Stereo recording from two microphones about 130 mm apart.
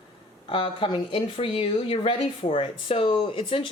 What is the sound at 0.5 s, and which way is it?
Speech, 40° left (ahead or behind).